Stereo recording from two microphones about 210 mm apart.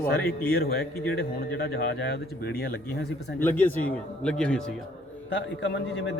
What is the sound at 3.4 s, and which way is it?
Speech, 10° left (ahead or behind).